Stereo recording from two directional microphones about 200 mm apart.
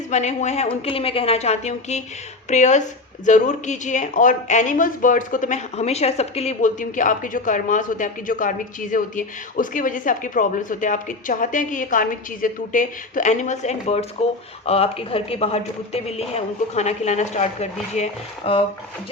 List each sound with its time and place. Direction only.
0.1 s speech: 35° left (ahead or behind)